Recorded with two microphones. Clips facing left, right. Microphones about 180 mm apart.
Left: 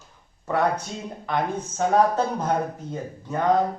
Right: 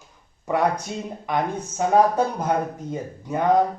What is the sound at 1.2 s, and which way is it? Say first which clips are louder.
Speech: right 1 dB; 10° right (ahead or behind).